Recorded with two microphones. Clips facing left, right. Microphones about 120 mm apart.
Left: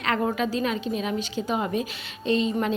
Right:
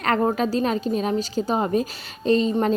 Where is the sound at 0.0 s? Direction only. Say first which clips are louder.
Right 4 dB; 40° right (ahead or behind).